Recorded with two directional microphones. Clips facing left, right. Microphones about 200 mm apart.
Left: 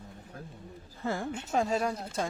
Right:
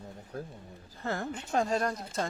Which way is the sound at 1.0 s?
5° left (ahead or behind).